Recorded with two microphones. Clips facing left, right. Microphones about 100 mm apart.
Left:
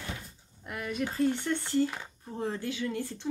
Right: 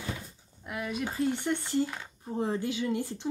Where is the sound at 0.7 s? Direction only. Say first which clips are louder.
Even; 5° right (ahead or behind).